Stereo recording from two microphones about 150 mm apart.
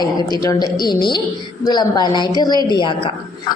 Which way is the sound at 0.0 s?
25° left (ahead or behind).